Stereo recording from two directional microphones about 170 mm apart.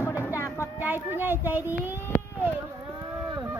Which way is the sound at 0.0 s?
15° left (ahead or behind).